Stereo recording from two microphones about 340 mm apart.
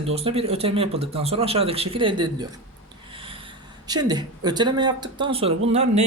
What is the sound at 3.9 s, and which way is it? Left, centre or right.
Speech, centre.